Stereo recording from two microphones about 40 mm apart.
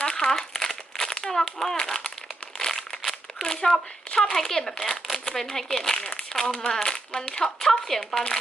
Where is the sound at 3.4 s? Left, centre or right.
Centre.